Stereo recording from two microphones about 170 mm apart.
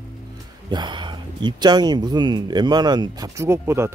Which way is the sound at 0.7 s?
25° right (ahead or behind).